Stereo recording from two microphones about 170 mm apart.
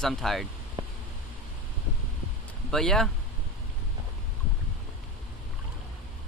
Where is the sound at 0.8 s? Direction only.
25° right (ahead or behind).